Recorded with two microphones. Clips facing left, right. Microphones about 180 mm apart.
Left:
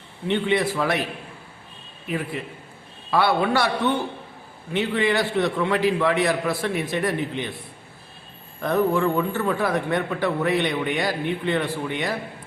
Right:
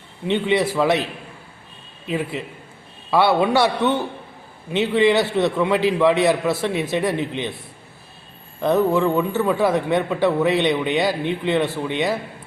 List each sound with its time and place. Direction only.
0.3 s speech: 20° right (ahead or behind)
2.0 s a man's voice: 20° right (ahead or behind)
8.6 s speech: 20° right (ahead or behind)